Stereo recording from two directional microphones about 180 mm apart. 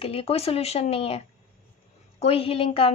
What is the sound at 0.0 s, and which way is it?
A woman's voice, 35° left (ahead or behind).